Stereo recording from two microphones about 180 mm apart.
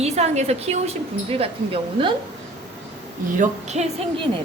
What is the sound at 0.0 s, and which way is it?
A woman's voice, 35° right (ahead or behind).